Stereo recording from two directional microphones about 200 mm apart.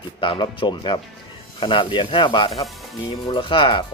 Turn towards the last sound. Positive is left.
turn(degrees=25)  # may be behind; listen again after turning